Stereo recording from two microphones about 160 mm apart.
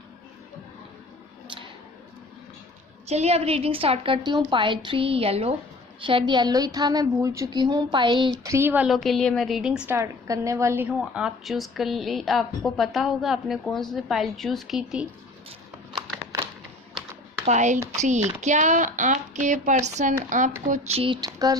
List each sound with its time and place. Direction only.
3.1 s a woman's voice: 40° right (ahead or behind)
8.4 s a woman's voice: 15° right (ahead or behind)
17.4 s a woman's voice: 50° right (ahead or behind)
21.2 s a woman's voice: 20° right (ahead or behind)